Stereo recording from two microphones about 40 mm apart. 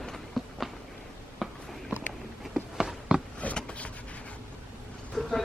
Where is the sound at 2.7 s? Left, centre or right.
Centre.